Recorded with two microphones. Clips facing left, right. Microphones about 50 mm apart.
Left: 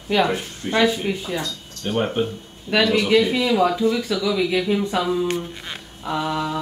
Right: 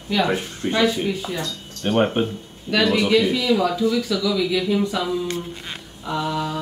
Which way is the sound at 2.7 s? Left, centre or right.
Left.